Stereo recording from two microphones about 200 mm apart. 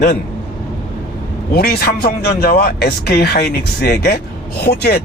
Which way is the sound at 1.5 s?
50° left (ahead or behind).